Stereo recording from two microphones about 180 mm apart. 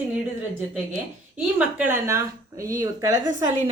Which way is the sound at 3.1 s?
45° right (ahead or behind).